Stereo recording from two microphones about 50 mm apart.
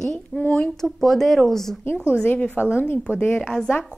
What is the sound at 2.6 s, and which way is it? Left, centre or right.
Speech, left.